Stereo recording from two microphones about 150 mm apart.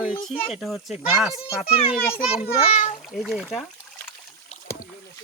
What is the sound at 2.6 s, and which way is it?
Speech, 45° left (ahead or behind).